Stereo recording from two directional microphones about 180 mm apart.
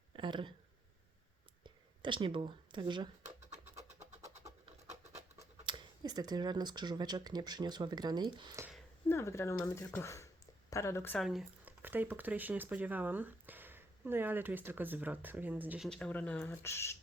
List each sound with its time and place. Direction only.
0.2 s speech: 25° right (ahead or behind)
1.6 s speech: 25° right (ahead or behind)
3.2 s a sound: 40° right (ahead or behind)
4.4 s scratch: 20° right (ahead or behind)
5.4 s speech: 25° right (ahead or behind)
9.0 s speech: 15° left (ahead or behind)
11.2 s speech: centre (ahead or behind)
15.9 s speech: 5° left (ahead or behind)